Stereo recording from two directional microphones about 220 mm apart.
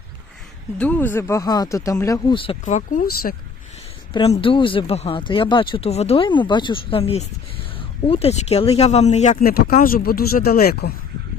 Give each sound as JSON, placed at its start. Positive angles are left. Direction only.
{"t": 0.8, "sound": "speech", "side_deg": 10}
{"t": 4.1, "sound": "speech", "side_deg": 25}